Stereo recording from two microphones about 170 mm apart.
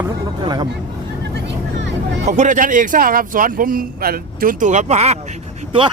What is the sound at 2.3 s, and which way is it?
A man's voice, 45° right (ahead or behind).